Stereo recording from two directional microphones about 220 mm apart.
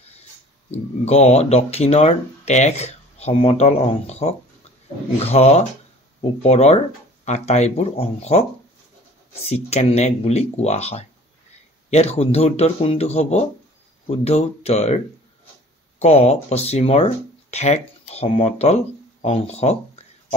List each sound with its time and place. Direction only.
1.0 s speech: 30° left (ahead or behind)
9.5 s speech: 30° left (ahead or behind)
16.0 s speech: 30° left (ahead or behind)